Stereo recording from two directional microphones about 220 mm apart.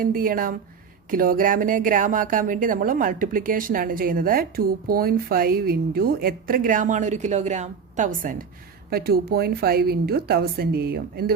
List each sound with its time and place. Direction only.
0.0 s a woman's voice: 40° right (ahead or behind)